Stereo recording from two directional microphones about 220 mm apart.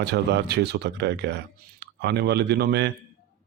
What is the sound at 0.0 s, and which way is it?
Speech, 50° right (ahead or behind).